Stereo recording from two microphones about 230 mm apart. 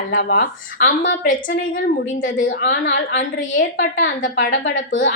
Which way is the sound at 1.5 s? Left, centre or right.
Left.